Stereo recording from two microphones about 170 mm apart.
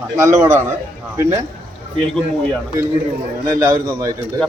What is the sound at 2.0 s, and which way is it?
Speech, 5° left (ahead or behind).